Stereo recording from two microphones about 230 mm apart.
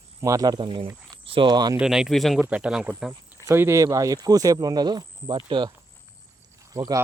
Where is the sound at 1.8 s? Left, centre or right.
Centre.